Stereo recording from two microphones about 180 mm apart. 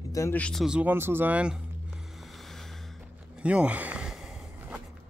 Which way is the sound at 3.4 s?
5° right (ahead or behind).